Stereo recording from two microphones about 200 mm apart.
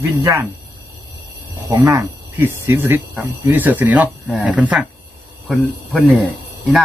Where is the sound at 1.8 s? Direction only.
15° right (ahead or behind).